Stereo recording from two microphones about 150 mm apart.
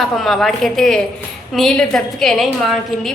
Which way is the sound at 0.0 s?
Centre (ahead or behind).